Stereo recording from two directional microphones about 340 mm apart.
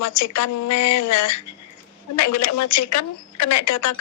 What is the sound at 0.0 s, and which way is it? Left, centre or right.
Speech, left.